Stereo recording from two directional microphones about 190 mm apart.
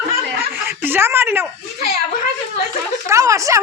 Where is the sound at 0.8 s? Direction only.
10° right (ahead or behind).